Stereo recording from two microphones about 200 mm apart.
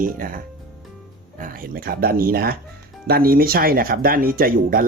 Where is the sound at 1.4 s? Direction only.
45° right (ahead or behind).